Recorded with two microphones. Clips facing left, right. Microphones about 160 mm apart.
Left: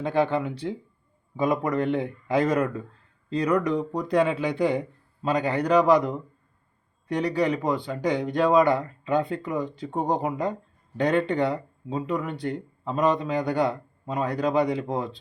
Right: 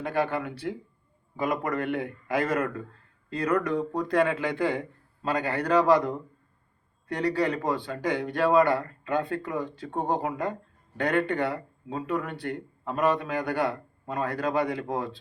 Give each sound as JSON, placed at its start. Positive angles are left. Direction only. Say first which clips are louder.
{"t": 0.0, "sound": "speech", "louder": "left 4 dB", "side_deg": 20}